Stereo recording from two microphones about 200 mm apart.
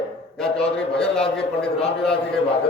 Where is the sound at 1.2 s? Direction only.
30° left (ahead or behind).